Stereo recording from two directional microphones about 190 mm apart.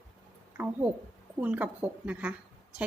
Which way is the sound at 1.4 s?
10° right (ahead or behind).